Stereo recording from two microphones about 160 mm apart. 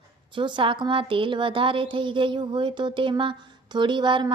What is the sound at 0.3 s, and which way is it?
A woman's voice, 30° right (ahead or behind).